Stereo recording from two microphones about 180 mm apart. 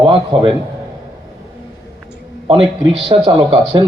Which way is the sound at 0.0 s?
25° right (ahead or behind).